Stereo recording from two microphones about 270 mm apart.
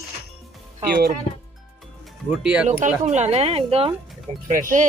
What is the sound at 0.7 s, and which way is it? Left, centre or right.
Speech, right.